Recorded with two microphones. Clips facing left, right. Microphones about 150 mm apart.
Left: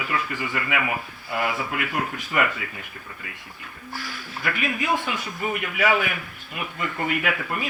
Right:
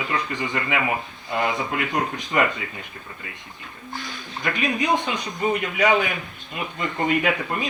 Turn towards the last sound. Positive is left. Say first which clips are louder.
# right 3 dB
turn(degrees=-25)  # may be behind; listen again after turning